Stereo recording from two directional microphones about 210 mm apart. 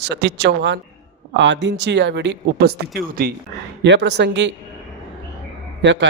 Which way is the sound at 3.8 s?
55° right (ahead or behind).